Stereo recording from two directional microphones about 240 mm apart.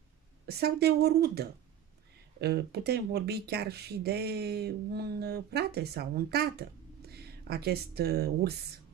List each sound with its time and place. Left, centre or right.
0.5 s speech: right